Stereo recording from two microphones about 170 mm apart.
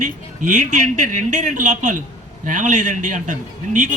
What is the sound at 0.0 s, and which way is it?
Speech, 45° right (ahead or behind).